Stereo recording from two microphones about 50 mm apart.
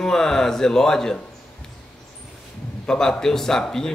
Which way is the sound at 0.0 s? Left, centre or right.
Centre.